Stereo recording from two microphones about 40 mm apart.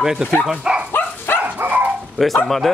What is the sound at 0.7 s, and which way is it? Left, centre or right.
Dog, right.